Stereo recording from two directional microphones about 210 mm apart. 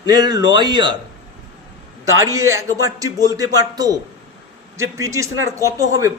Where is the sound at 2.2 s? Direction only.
15° right (ahead or behind).